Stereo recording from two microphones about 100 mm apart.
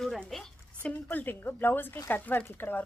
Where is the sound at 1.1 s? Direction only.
20° left (ahead or behind).